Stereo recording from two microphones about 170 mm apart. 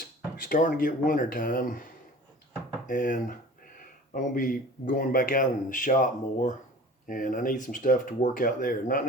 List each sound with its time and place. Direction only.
0.4 s speech: 55° left (ahead or behind)